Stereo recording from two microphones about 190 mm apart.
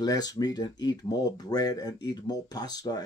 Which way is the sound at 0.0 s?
20° left (ahead or behind).